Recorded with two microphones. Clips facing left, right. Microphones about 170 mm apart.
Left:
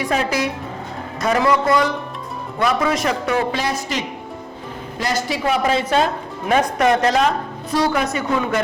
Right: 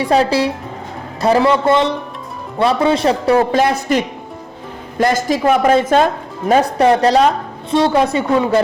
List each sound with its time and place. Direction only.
0.0 s a woman's voice: 30° right (ahead or behind)
3.5 s speech: 55° right (ahead or behind)
6.5 s a woman's voice: 35° right (ahead or behind)